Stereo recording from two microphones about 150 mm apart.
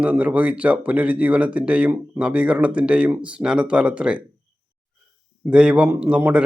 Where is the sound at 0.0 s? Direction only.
10° right (ahead or behind).